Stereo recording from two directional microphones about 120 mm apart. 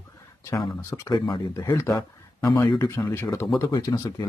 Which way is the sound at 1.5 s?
20° left (ahead or behind).